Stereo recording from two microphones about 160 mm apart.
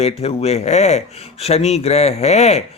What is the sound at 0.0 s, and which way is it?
Speech, 40° left (ahead or behind).